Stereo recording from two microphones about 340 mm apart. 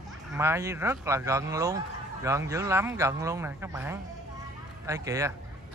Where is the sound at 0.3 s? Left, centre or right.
Centre.